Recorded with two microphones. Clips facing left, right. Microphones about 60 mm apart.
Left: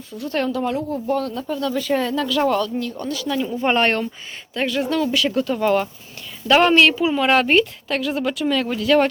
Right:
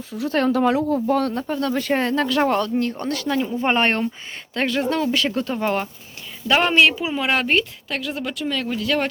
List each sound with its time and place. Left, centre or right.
0.3 s speech: right
1.5 s speech: right
1.8 s speech: right
3.2 s speech: right
4.5 s speech: right
5.6 s a woman's voice: centre